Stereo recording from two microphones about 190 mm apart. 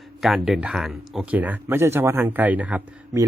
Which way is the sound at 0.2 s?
Centre (ahead or behind).